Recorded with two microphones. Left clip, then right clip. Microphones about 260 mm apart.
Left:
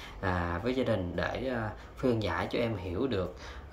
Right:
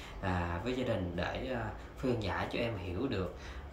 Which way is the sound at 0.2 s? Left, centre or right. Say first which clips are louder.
Left 4 dB; centre.